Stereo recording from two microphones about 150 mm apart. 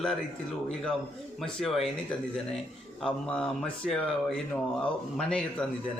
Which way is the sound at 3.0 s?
5° left (ahead or behind).